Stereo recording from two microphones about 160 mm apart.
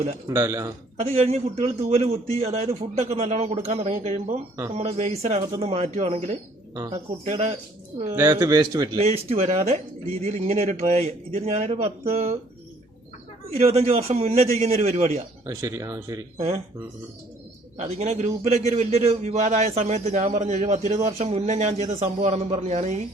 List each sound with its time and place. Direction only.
0.3 s a man's voice: 20° right (ahead or behind)
0.9 s a man's voice: 40° right (ahead or behind)
8.1 s a man's voice: 20° right (ahead or behind)
9.0 s speech: 40° right (ahead or behind)
13.6 s a man's voice: 40° right (ahead or behind)
15.4 s a man's voice: 20° right (ahead or behind)
17.7 s a man's voice: 45° right (ahead or behind)